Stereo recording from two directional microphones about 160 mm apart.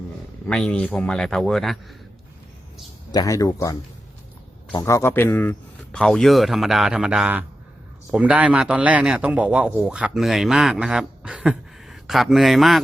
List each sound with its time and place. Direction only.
0.4 s a man's voice: 5° left (ahead or behind)
3.1 s a man's voice: 20° left (ahead or behind); by 12.8 s centre (ahead or behind)